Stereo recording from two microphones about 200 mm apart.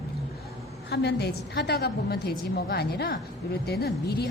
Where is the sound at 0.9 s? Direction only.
55° left (ahead or behind).